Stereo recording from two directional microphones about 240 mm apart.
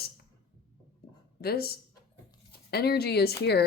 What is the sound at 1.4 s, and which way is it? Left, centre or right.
Speech, left.